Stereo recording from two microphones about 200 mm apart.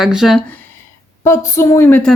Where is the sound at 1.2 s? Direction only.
15° left (ahead or behind).